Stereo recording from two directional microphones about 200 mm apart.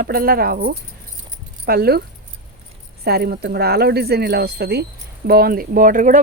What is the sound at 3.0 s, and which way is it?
Speech, 50° right (ahead or behind).